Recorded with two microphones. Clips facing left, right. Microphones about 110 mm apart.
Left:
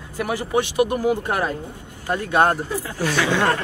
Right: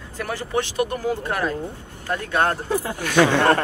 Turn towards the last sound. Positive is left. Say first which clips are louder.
# right 4 dB
turn(degrees=-55)  # may be behind; listen again after turning